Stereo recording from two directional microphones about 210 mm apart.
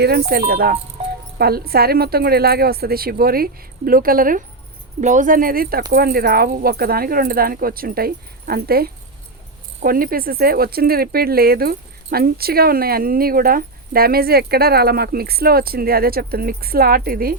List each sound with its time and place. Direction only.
0.3 s speech: 50° right (ahead or behind)